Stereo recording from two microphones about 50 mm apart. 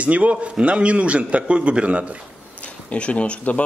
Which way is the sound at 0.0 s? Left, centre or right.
Right.